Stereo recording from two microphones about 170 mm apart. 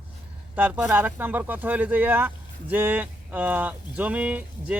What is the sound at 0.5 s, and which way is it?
Speech, 10° right (ahead or behind).